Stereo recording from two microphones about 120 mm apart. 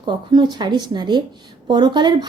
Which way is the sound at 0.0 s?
40° right (ahead or behind).